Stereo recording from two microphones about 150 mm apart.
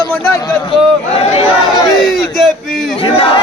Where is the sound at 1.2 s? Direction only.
45° left (ahead or behind).